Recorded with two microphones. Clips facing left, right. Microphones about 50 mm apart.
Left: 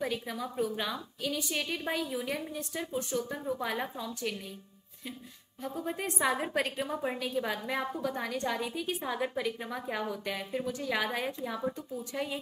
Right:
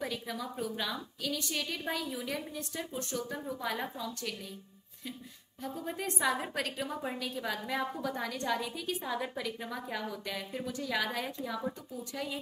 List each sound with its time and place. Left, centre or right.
0.0 s a woman's voice: centre
5.6 s a woman's voice: centre